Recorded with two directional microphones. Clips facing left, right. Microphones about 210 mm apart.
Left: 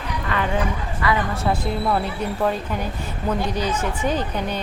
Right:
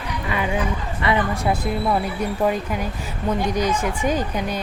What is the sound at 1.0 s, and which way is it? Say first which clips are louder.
Speech: right 1 dB; 25° right (ahead or behind).